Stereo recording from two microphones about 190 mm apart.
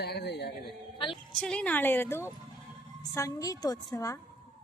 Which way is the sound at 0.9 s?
25° left (ahead or behind).